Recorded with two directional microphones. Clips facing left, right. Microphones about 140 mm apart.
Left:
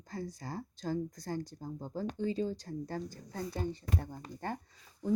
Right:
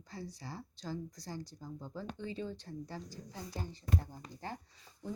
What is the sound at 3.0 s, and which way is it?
Speech, 55° left (ahead or behind).